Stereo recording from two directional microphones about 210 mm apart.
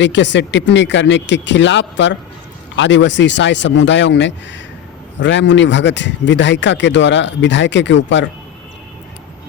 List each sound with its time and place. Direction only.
0.0 s speech: 60° left (ahead or behind)